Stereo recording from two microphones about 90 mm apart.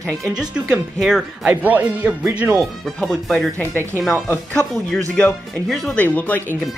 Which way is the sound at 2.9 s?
Centre (ahead or behind).